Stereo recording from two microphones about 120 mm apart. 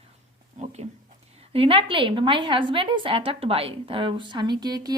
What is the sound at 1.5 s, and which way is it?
A woman's voice, 50° right (ahead or behind).